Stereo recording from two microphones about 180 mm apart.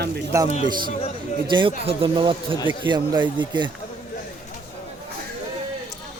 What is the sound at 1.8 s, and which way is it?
Speech, 30° right (ahead or behind).